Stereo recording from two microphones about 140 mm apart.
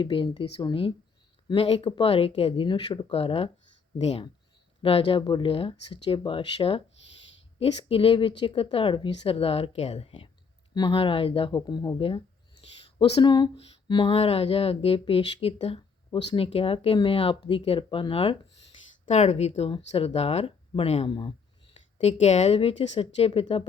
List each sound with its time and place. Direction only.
0.0 s a woman's voice: 35° left (ahead or behind)
11.9 s speech: 40° left (ahead or behind)
19.0 s a woman's voice: 55° left (ahead or behind); by 21.8 s 35° left (ahead or behind)
21.9 s a woman's voice: 55° left (ahead or behind)